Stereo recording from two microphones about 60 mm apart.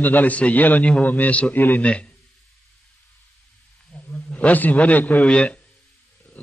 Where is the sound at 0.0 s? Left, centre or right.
Left.